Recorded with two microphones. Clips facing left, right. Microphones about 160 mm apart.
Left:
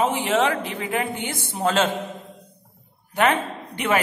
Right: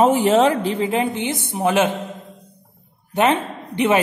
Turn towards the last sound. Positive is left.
turn(degrees=-25)  # may be behind; listen again after turning